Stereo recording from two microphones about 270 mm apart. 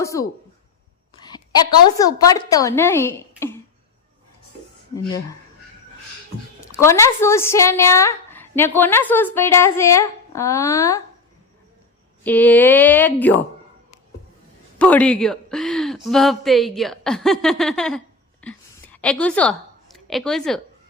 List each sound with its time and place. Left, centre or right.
0.0 s speech: centre
2.0 s speech: centre
6.7 s speech: centre
12.2 s speech: centre
14.8 s speech: centre